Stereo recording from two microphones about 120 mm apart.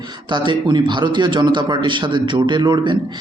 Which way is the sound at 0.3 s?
40° right (ahead or behind).